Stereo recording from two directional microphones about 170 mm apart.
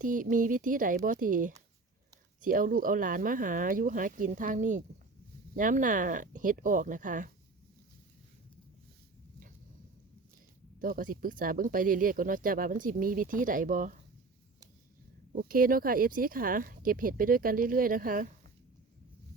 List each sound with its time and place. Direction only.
0.0 s speech: 50° right (ahead or behind)
10.8 s speech: 55° right (ahead or behind)
15.4 s speech: 55° right (ahead or behind)